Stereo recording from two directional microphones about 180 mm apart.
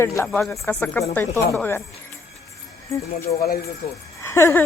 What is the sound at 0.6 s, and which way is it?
Speech, 15° left (ahead or behind).